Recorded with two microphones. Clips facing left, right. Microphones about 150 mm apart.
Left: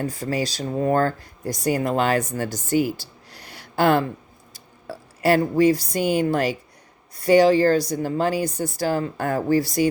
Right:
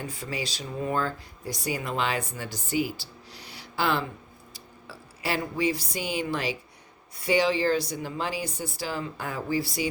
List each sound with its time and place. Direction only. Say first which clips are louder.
0.1 s speech: left 8 dB; 40° left (ahead or behind)